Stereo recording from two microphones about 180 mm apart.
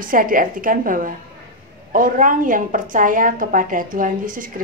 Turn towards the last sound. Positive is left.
turn(degrees=-50)  # may be behind; listen again after turning